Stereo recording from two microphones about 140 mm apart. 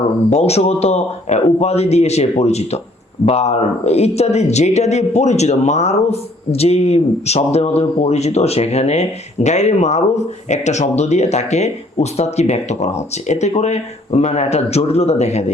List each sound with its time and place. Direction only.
0.3 s a man's voice: 50° left (ahead or behind)